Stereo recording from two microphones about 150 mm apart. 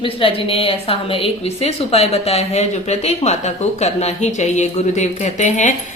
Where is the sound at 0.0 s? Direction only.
35° left (ahead or behind).